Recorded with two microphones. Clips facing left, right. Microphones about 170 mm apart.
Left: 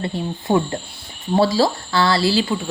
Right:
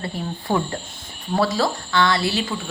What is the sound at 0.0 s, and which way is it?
A woman's voice, 20° left (ahead or behind).